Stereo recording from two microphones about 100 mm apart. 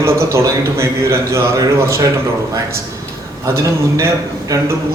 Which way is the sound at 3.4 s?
30° right (ahead or behind).